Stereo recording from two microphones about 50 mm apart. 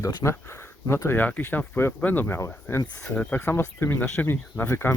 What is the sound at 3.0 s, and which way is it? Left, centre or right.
Speech, left.